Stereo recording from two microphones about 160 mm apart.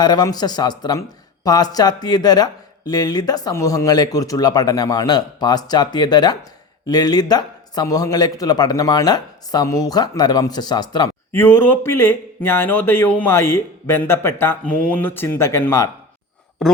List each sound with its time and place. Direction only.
0.0 s speech: 25° left (ahead or behind)
11.3 s speech: 15° left (ahead or behind)
16.6 s speech: 5° left (ahead or behind)